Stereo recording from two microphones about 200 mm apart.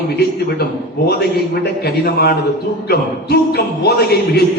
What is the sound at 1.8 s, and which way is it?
A man's voice, 55° left (ahead or behind).